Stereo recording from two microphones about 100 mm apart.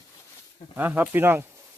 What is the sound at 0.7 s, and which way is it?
Speech, 20° right (ahead or behind).